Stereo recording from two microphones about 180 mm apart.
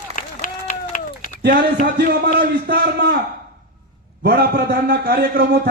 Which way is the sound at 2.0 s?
65° right (ahead or behind).